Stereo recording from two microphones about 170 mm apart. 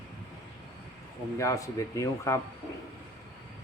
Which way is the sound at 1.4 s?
20° left (ahead or behind).